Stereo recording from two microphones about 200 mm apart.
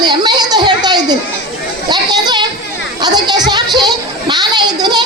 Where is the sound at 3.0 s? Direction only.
20° right (ahead or behind).